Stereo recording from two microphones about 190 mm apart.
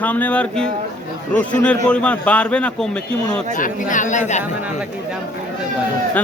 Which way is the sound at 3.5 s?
45° left (ahead or behind).